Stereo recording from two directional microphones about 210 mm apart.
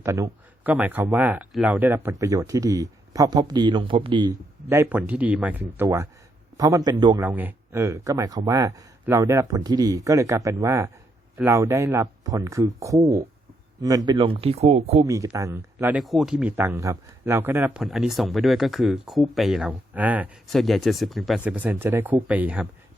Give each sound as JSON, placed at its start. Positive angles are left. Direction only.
{"t": 0.0, "sound": "speech", "side_deg": -15}
{"t": 7.2, "sound": "speech", "side_deg": -10}
{"t": 15.0, "sound": "speech", "side_deg": -15}